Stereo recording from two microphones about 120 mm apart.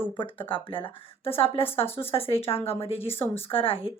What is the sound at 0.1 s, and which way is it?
A woman's voice, 45° left (ahead or behind).